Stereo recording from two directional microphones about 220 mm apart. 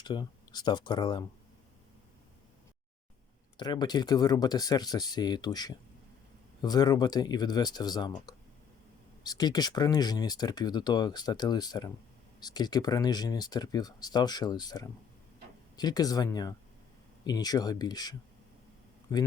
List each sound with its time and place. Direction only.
0.0 s speech: 20° left (ahead or behind)
3.6 s speech: 20° left (ahead or behind)